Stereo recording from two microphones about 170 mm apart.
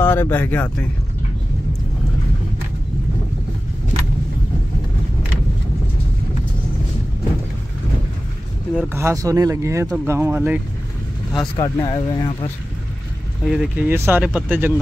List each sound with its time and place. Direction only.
0.0 s speech: 15° left (ahead or behind)
8.7 s speech: 15° right (ahead or behind)
11.5 s speech: 30° left (ahead or behind)
13.5 s speech: 5° right (ahead or behind)